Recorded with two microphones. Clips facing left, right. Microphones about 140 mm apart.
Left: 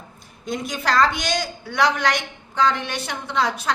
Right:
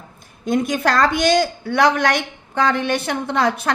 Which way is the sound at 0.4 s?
50° right (ahead or behind).